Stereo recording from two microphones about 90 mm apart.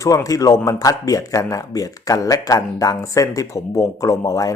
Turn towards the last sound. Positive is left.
turn(degrees=40)  # may be behind; listen again after turning